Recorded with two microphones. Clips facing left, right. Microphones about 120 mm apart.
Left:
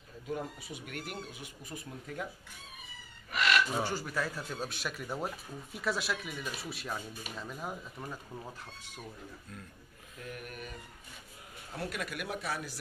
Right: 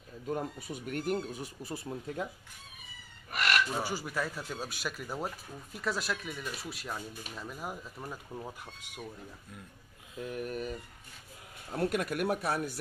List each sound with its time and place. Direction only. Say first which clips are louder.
0.3 s speech: right 3 dB; 45° right (ahead or behind)
3.3 s fowl: left 1 dB; 50° right (ahead or behind)
3.8 s speech: even; 5° right (ahead or behind)
10.1 s mantra: right 8 dB; 25° right (ahead or behind)
11.7 s speech: right 7 dB; 50° right (ahead or behind)